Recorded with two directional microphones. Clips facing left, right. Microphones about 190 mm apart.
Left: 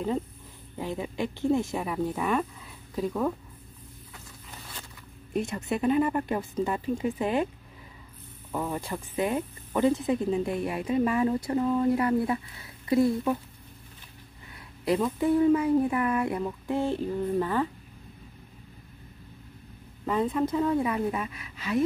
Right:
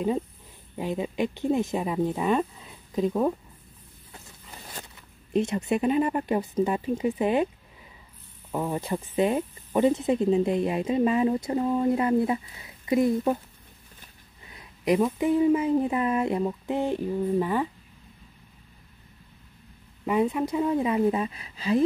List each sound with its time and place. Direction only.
0.7 s speech: 20° right (ahead or behind)
5.3 s speech: 20° right (ahead or behind)
8.5 s speech: 15° right (ahead or behind)
14.5 s speech: 20° right (ahead or behind)
20.1 s speech: 15° right (ahead or behind); by 21.8 s 30° right (ahead or behind)